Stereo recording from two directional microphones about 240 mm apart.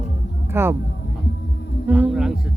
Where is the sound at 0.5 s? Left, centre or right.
Centre.